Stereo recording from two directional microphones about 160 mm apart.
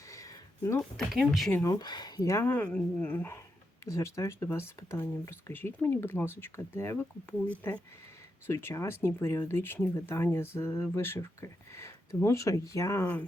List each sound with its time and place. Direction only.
0.1 s a sound: 20° left (ahead or behind)
0.8 s speech: centre (ahead or behind)
1.5 s speech: 20° left (ahead or behind)